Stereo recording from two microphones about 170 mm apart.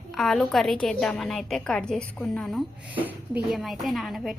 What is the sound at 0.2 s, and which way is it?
A woman's voice, centre (ahead or behind).